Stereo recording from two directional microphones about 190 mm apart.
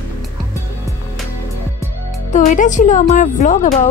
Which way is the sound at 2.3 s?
40° left (ahead or behind).